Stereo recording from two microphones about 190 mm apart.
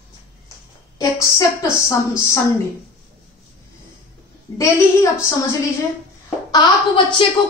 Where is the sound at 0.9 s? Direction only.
15° left (ahead or behind).